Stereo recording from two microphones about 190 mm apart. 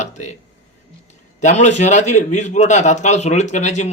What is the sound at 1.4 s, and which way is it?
A man's voice, 40° left (ahead or behind).